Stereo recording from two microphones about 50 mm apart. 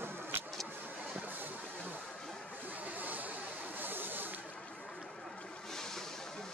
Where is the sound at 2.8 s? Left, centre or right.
Right.